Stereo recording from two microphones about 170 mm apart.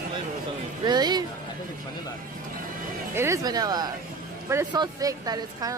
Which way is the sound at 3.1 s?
15° right (ahead or behind).